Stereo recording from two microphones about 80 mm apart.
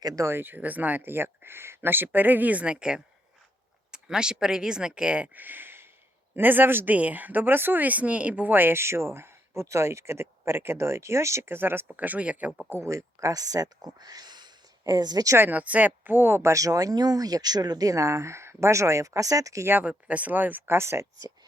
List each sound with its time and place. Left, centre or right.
0.0 s speech: right
0.3 s speech: right
12.7 s speech: right
15.4 s speech: right
19.6 s speech: right